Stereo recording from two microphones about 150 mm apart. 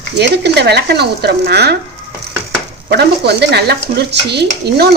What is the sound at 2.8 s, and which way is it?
Speech, 90° right.